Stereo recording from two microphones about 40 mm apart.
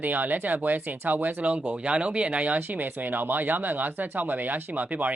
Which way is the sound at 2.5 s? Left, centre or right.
Right.